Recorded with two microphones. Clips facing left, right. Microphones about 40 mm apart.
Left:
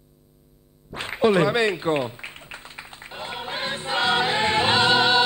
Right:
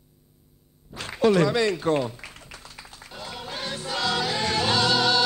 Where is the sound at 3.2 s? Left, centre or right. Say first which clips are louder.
Left 4 dB; left.